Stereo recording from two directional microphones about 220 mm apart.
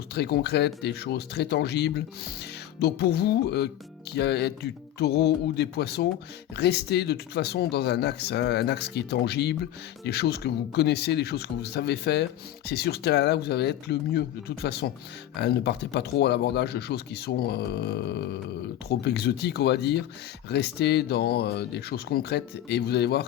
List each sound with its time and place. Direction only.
0.1 s speech: 50° left (ahead or behind)